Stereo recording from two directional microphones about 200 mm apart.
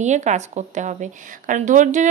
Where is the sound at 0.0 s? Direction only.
35° right (ahead or behind).